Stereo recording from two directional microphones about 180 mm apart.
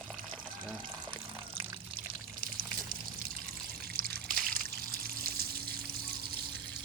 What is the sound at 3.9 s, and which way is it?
Trickle, 55° right (ahead or behind).